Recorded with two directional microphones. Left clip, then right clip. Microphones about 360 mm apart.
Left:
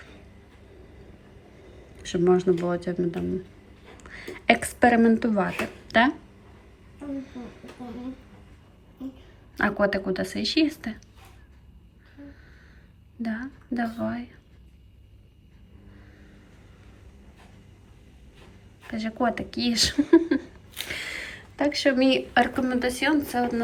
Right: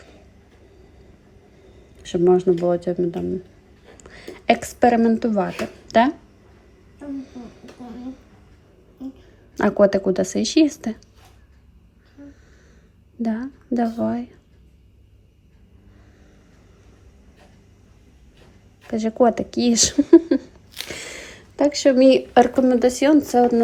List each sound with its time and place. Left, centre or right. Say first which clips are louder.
2.1 s a woman's voice: right 5 dB; centre
4.0 s a sound: right 2 dB; centre
7.2 s speech: right 2 dB; centre
9.6 s a woman's voice: right 7 dB; centre
13.2 s speech: right 6 dB; centre
18.9 s a woman's voice: right 9 dB; centre